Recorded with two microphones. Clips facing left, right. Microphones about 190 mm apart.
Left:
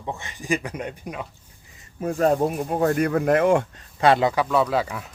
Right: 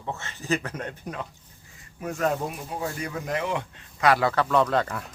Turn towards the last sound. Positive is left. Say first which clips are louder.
# left 1 dB
turn(degrees=5)  # may be behind; listen again after turning